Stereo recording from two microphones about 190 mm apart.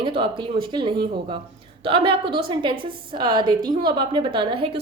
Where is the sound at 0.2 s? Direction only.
25° right (ahead or behind).